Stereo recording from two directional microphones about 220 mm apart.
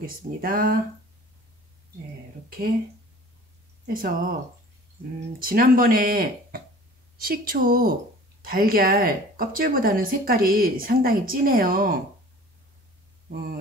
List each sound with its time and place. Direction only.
0.0 s speech: 40° right (ahead or behind)
3.8 s speech: 40° right (ahead or behind)
5.4 s speech: 40° right (ahead or behind)
13.3 s speech: 40° right (ahead or behind)